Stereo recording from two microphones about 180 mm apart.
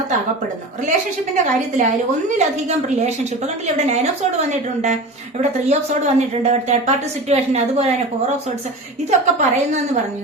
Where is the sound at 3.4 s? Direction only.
40° right (ahead or behind).